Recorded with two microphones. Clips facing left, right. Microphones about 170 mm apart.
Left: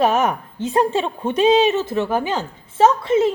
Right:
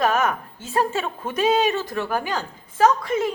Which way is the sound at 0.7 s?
20° left (ahead or behind).